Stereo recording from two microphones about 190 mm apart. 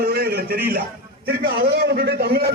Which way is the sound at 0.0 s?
55° right (ahead or behind).